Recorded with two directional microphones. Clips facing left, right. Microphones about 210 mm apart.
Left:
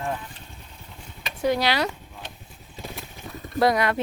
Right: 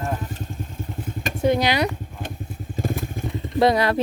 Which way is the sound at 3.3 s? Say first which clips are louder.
Right 3 dB; 25° right (ahead or behind).